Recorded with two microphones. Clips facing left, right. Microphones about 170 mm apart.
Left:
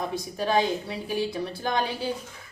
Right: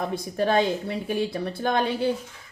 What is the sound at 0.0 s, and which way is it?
Speech, 55° right (ahead or behind).